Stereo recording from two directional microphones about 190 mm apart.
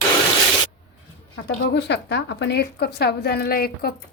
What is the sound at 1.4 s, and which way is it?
Speech, 65° left (ahead or behind).